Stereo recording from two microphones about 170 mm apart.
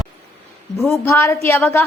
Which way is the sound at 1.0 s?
15° left (ahead or behind).